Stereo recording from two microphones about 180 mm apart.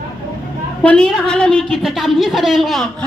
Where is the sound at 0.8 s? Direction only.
5° left (ahead or behind).